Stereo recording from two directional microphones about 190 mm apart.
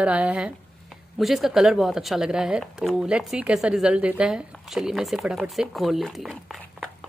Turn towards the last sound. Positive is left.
turn(degrees=0)  # may be behind; listen again after turning